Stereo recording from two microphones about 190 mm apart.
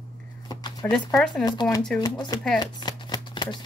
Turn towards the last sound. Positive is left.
turn(degrees=25)  # may be behind; listen again after turning